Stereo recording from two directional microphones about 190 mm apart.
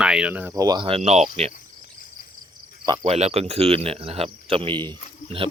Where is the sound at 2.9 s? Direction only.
35° right (ahead or behind).